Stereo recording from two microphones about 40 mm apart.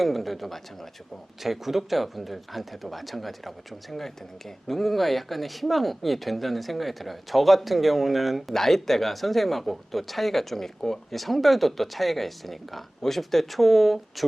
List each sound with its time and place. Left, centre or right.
0.0 s speech: centre